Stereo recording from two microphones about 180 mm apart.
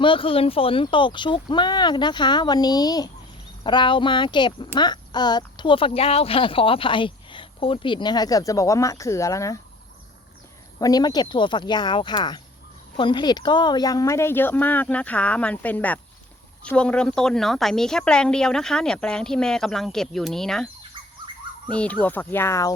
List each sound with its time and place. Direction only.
0.0 s speech: 30° left (ahead or behind)
10.8 s a woman's voice: 20° left (ahead or behind); by 20.7 s centre (ahead or behind)
21.7 s speech: 5° left (ahead or behind)